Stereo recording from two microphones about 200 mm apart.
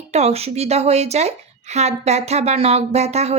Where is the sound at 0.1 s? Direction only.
30° right (ahead or behind).